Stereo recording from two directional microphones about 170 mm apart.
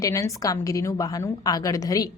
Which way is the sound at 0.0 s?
20° left (ahead or behind).